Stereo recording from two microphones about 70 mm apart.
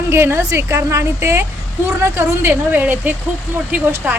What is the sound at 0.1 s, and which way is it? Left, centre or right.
A woman's voice, right.